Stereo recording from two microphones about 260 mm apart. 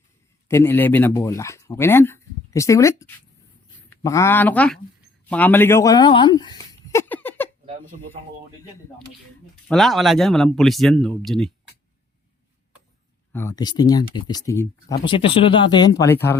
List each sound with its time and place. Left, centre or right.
0.4 s speech: centre
5.3 s a sound: centre
9.6 s speech: centre
13.3 s speech: centre